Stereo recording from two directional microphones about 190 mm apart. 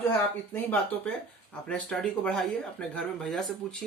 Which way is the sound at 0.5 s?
5° left (ahead or behind).